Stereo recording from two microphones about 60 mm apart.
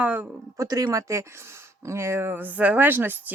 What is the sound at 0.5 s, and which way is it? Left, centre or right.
Speech, right.